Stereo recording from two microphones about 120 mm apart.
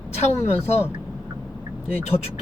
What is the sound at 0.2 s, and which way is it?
Speech, 65° left (ahead or behind).